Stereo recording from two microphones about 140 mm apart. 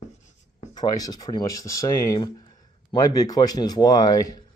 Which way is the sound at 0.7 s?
25° left (ahead or behind).